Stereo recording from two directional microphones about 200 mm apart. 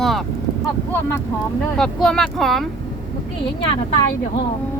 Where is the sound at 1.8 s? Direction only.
5° left (ahead or behind).